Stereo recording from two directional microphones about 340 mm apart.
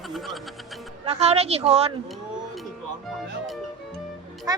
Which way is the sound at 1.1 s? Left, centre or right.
Centre.